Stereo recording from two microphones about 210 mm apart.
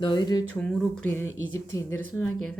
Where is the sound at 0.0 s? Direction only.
20° left (ahead or behind).